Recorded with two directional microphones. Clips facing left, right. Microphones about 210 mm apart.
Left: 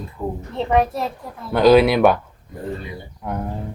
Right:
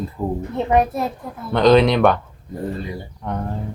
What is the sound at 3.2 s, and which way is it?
Speech, 10° left (ahead or behind).